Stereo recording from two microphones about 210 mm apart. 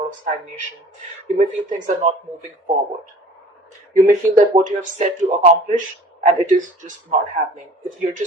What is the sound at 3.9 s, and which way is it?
Speech, 35° right (ahead or behind).